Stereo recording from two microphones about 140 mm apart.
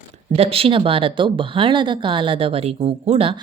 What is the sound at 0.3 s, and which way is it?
A woman's voice, 45° right (ahead or behind).